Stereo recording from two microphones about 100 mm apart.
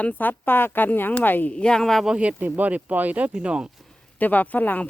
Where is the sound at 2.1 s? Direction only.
15° right (ahead or behind).